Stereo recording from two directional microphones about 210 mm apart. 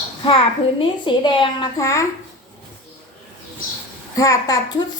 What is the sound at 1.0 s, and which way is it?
A woman's voice, 25° left (ahead or behind).